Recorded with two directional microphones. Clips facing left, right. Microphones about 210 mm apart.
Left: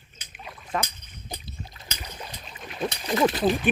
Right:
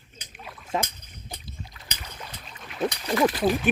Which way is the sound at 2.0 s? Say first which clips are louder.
Left 3 dB; 15° left (ahead or behind).